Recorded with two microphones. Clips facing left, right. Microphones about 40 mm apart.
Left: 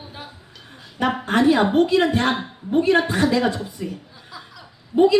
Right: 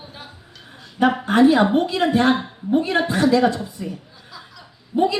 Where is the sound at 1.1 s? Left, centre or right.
Centre.